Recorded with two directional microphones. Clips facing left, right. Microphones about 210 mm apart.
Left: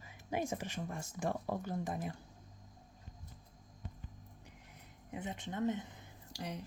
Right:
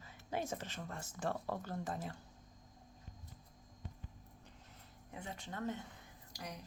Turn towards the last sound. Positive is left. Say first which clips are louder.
# left 5 dB
turn(degrees=25)  # may be behind; listen again after turning